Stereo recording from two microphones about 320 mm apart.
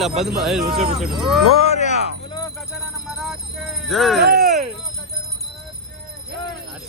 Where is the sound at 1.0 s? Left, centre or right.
Centre.